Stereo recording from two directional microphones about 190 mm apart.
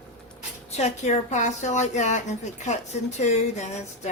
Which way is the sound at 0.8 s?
35° left (ahead or behind).